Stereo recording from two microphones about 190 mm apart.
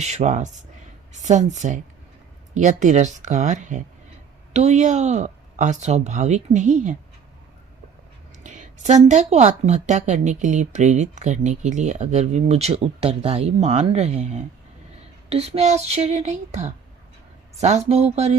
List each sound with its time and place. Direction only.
0.0 s speech: 40° right (ahead or behind)
8.4 s speech: 40° right (ahead or behind)